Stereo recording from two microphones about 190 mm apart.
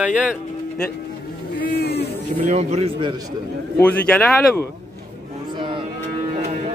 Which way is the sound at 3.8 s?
5° left (ahead or behind).